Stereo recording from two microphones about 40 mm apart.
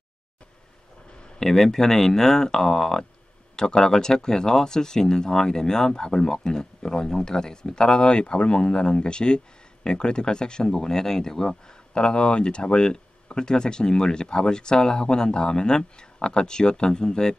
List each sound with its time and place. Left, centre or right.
1.4 s speech: centre